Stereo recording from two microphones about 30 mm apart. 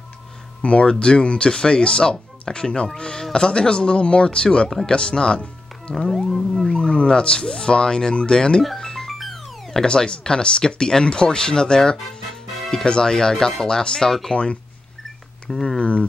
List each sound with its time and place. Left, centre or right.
0.6 s speech: left
0.8 s speech: left
5.9 s music: left
6.1 s a sound: centre
6.7 s speech: left
8.7 s music: centre
9.8 s speech: left
14.3 s speech: left
15.5 s speech: centre
15.8 s speech: left